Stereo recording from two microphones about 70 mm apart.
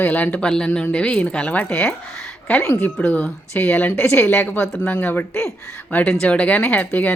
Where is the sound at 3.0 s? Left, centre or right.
Centre.